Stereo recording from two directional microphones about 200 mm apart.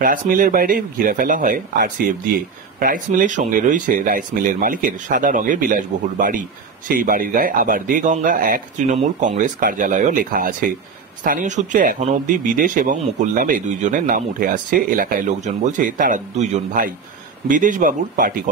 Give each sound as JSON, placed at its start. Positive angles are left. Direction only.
{"t": 0.0, "sound": "speech", "side_deg": -45}